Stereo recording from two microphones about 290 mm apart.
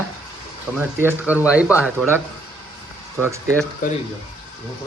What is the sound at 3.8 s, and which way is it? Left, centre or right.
Speech, left.